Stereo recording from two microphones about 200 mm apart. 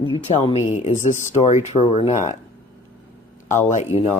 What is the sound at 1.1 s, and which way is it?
Speech, 35° left (ahead or behind).